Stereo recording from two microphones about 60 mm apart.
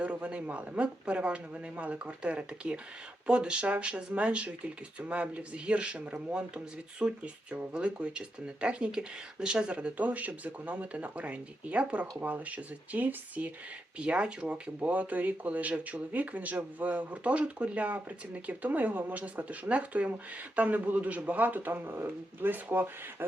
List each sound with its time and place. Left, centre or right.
0.0 s a man's voice: right